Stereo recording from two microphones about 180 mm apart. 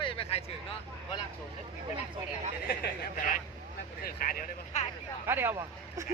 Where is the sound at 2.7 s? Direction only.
50° left (ahead or behind).